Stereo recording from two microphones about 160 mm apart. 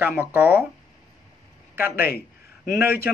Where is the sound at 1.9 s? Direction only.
70° left (ahead or behind).